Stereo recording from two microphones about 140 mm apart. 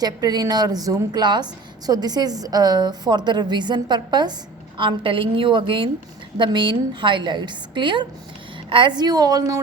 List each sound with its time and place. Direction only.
0.0 s a woman's voice: 30° right (ahead or behind)